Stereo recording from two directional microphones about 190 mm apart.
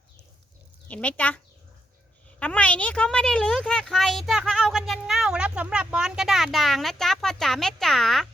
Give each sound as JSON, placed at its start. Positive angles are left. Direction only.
{"t": 0.9, "sound": "speech", "side_deg": 10}
{"t": 2.4, "sound": "a woman's voice", "side_deg": 5}